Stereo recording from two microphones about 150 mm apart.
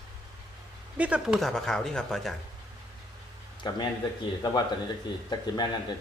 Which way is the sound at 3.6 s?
30° left (ahead or behind).